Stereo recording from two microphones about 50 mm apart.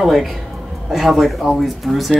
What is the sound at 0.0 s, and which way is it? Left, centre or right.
Speech, centre.